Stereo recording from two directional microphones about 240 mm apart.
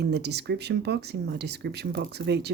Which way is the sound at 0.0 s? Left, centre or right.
Right.